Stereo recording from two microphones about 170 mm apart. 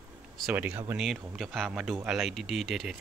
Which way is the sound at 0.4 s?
5° right (ahead or behind).